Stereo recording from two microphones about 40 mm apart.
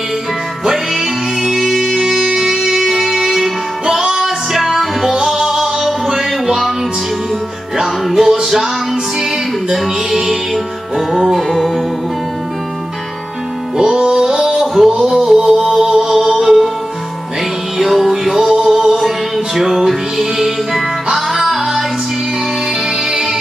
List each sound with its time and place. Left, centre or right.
0.7 s music: centre
7.8 s music: centre
9.7 s music: centre
13.7 s music: centre
17.7 s music: centre